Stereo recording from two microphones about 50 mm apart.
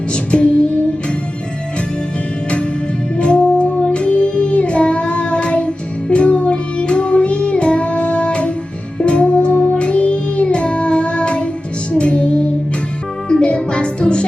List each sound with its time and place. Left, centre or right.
0.1 s music: left
3.2 s music: left